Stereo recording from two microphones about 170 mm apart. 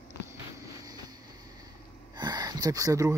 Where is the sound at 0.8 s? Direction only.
20° right (ahead or behind).